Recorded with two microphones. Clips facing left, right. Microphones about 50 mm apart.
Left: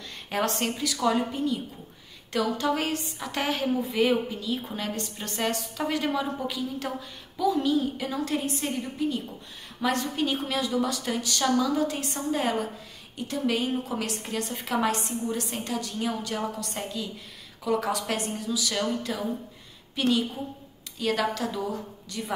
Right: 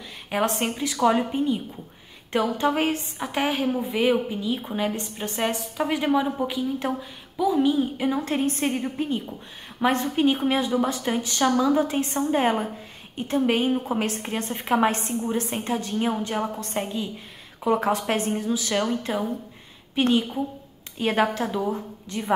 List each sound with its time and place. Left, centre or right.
0.3 s a woman's voice: centre
8.4 s a woman's voice: right